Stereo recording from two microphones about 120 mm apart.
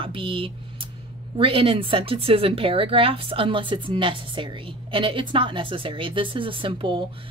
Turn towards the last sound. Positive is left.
turn(degrees=-45)  # may be behind; listen again after turning